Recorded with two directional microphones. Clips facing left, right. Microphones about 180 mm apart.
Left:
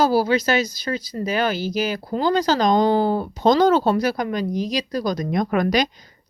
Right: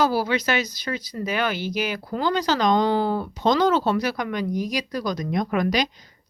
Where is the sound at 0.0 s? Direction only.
35° left (ahead or behind).